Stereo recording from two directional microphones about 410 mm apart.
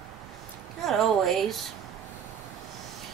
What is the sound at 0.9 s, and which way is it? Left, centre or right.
Speech, centre.